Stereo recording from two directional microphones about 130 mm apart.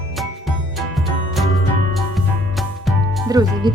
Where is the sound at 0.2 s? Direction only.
Centre (ahead or behind).